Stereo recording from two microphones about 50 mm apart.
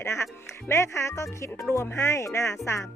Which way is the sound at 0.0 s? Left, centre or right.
Left.